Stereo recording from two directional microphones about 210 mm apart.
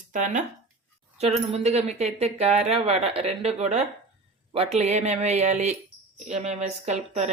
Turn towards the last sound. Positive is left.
turn(degrees=-30)  # may be behind; listen again after turning